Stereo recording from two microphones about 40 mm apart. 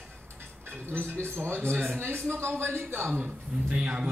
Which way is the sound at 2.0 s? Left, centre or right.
Right.